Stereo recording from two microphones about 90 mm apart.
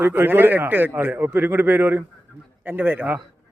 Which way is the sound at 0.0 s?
20° right (ahead or behind).